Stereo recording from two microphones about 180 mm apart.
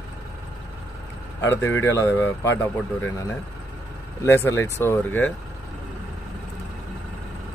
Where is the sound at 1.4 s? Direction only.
15° left (ahead or behind).